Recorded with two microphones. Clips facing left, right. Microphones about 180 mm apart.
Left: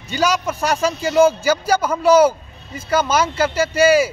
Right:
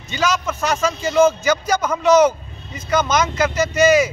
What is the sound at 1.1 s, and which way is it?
A man's voice, 10° left (ahead or behind).